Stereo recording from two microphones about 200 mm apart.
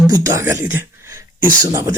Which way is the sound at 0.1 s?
15° right (ahead or behind).